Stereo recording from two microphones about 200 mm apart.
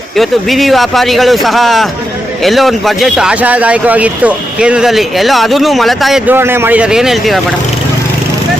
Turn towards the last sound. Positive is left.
turn(degrees=0)  # may be behind; listen again after turning